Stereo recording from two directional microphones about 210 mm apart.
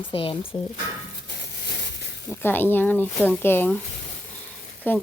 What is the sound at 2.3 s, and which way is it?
Speech, 10° left (ahead or behind).